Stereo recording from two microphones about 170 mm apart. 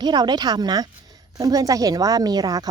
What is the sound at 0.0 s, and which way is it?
A woman's voice, 25° right (ahead or behind).